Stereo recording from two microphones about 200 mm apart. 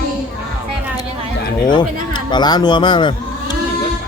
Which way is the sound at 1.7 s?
20° left (ahead or behind).